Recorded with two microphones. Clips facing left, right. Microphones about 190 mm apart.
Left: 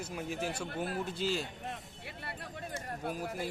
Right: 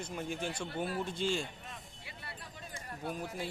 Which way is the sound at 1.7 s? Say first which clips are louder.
Left 5 dB; 60° left (ahead or behind).